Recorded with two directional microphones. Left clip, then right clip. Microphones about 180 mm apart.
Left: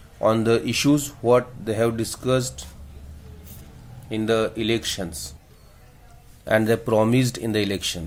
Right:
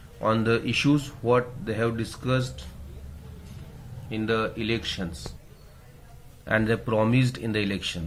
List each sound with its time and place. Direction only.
0.2 s speech: 40° left (ahead or behind)
4.1 s speech: 50° left (ahead or behind)
6.4 s speech: 45° left (ahead or behind)